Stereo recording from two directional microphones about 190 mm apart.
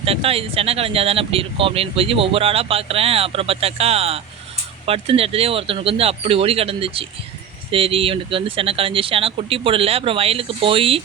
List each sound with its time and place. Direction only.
0.0 s speech: 30° right (ahead or behind)